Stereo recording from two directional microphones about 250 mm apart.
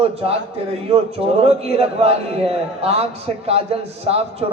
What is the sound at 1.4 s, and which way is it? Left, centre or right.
A man's voice, right.